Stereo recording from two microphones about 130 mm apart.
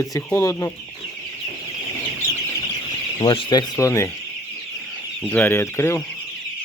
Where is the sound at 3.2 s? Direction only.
40° left (ahead or behind); by 4.1 s 20° left (ahead or behind).